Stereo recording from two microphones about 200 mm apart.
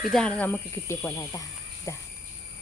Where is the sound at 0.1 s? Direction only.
5° left (ahead or behind).